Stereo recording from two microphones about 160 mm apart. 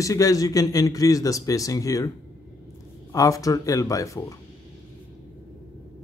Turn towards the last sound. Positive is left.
turn(degrees=20)  # may be behind; listen again after turning